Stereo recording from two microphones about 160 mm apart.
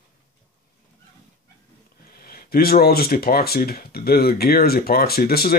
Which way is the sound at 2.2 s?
70° left (ahead or behind).